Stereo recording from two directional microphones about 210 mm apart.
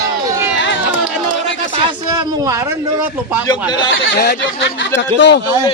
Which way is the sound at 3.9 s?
65° left (ahead or behind).